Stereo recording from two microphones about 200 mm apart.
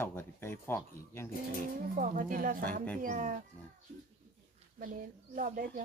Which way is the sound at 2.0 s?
40° right (ahead or behind).